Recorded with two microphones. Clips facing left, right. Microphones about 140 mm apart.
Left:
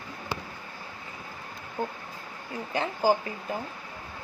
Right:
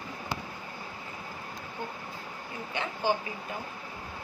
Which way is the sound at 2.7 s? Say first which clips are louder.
Left 5 dB; 35° left (ahead or behind).